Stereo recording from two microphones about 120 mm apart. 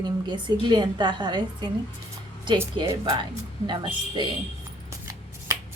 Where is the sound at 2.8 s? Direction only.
35° right (ahead or behind).